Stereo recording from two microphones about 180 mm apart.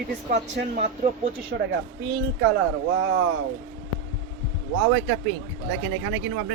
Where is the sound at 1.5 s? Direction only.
65° right (ahead or behind).